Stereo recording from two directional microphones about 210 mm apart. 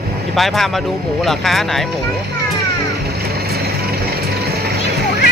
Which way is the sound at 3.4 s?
50° right (ahead or behind).